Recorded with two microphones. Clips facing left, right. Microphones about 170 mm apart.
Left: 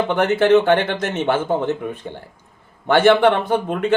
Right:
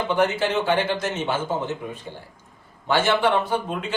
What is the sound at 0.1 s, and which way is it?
A man's voice, 60° left (ahead or behind).